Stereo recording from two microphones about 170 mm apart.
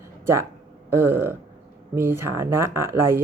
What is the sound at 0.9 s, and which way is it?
Speech, 15° right (ahead or behind).